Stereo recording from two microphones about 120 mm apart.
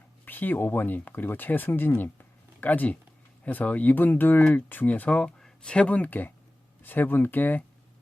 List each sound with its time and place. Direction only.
0.3 s speech: 15° left (ahead or behind)